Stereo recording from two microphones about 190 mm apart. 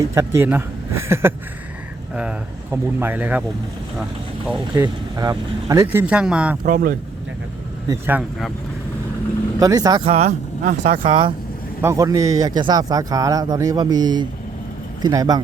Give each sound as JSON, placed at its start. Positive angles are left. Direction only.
{"t": 0.0, "sound": "speech", "side_deg": -15}
{"t": 3.0, "sound": "speech", "side_deg": -10}
{"t": 4.8, "sound": "speech", "side_deg": -20}
{"t": 6.6, "sound": "speech", "side_deg": -45}
{"t": 7.9, "sound": "speech", "side_deg": -10}
{"t": 9.6, "sound": "speech", "side_deg": -20}
{"t": 11.0, "sound": "speech", "side_deg": -30}
{"t": 11.8, "sound": "speech", "side_deg": -15}